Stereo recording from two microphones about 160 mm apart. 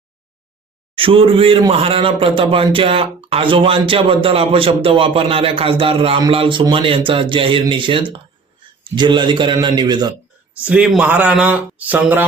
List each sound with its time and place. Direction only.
0.9 s speech: 35° right (ahead or behind)
10.6 s a man's voice: 5° right (ahead or behind)